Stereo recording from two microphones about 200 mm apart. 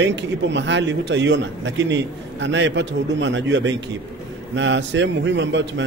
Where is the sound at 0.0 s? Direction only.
60° right (ahead or behind).